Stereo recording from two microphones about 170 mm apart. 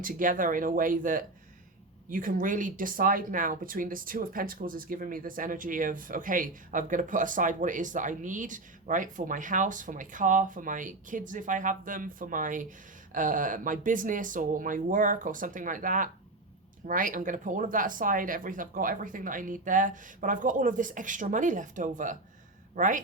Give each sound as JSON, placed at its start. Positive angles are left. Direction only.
{"t": 0.0, "sound": "speech", "side_deg": -50}